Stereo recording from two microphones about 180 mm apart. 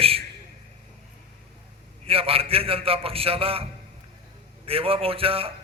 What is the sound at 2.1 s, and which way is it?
A man's voice, 30° right (ahead or behind).